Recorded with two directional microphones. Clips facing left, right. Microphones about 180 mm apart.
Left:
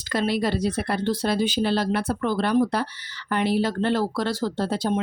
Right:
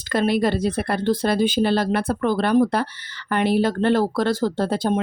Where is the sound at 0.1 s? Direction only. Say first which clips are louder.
Right 4 dB; 55° right (ahead or behind).